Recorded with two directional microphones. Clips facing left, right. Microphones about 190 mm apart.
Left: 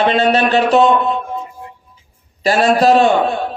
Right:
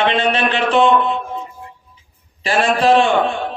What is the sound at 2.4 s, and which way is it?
A man's voice, 40° left (ahead or behind).